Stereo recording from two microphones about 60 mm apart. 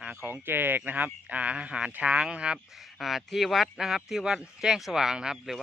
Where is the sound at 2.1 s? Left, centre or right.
Centre.